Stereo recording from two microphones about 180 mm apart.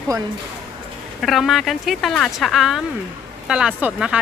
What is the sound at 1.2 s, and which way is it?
Speech, centre (ahead or behind).